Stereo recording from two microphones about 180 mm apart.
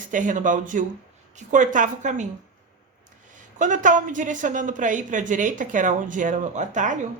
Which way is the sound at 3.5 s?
45° right (ahead or behind).